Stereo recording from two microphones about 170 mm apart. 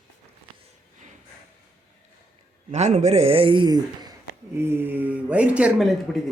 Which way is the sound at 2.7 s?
40° right (ahead or behind).